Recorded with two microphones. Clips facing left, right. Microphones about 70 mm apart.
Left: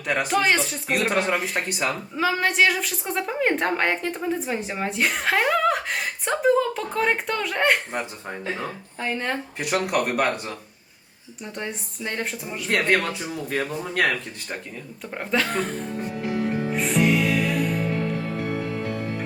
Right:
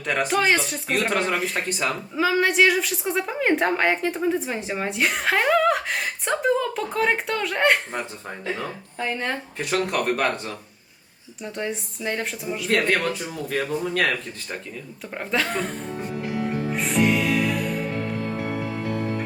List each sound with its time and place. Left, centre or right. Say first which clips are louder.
0.0 s a woman's voice: even; centre
9.6 s a woman's voice: left 1 dB; centre
13.1 s speech: even; centre
15.1 s a woman's voice: left 1 dB; centre
16.3 s music: left 2 dB; centre